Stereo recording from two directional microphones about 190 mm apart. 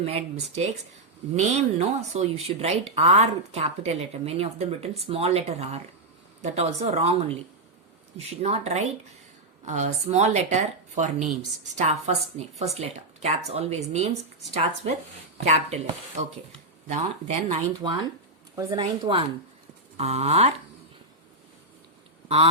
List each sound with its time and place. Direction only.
0.0 s speech: 30° right (ahead or behind)
18.5 s speech: 20° right (ahead or behind)